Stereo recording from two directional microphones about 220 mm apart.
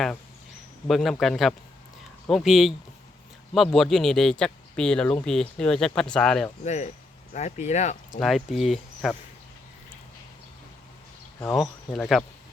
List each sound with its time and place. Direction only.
0.9 s speech: centre (ahead or behind)
6.7 s speech: 35° left (ahead or behind)
8.2 s speech: centre (ahead or behind)
11.9 s speech: centre (ahead or behind)